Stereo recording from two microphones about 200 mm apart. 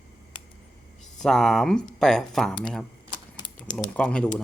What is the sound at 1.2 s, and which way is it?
Speech, centre (ahead or behind).